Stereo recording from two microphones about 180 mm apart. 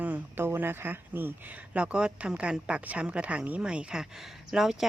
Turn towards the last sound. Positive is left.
turn(degrees=0)  # may be behind; listen again after turning